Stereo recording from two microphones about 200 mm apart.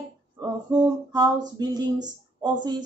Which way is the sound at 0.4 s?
20° right (ahead or behind).